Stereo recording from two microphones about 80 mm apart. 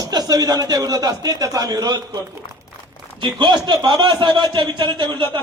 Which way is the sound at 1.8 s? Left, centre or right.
Right.